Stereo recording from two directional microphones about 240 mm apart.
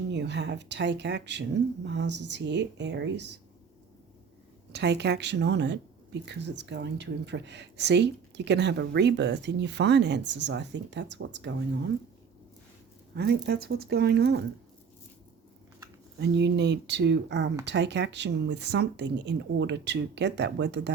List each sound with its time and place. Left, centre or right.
0.1 s speech: right
4.7 s speech: right
13.1 s speech: right
16.2 s speech: right